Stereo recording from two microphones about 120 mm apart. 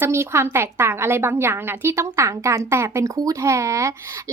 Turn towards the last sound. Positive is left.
turn(degrees=-25)  # may be behind; listen again after turning